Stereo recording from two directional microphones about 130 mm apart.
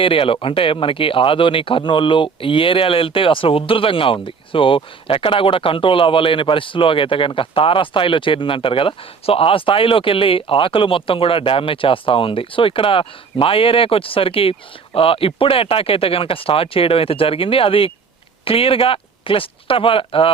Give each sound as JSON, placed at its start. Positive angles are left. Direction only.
{"t": 0.0, "sound": "speech", "side_deg": 45}